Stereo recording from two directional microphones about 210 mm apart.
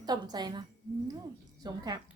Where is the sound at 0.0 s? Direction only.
20° right (ahead or behind).